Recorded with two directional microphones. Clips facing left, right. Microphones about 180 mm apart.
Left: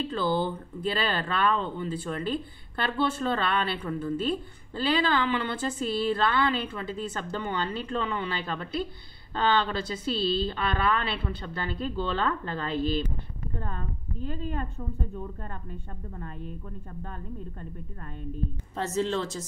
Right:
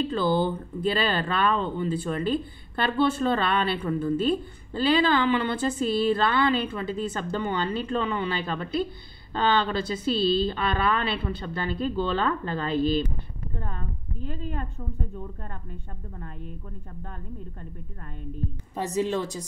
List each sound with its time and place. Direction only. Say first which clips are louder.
0.1 s a woman's voice: right 3 dB; 15° right (ahead or behind)
18.8 s a woman's voice: right 2 dB; 15° right (ahead or behind)